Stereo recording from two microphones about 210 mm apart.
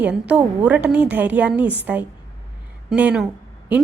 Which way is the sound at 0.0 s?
5° right (ahead or behind).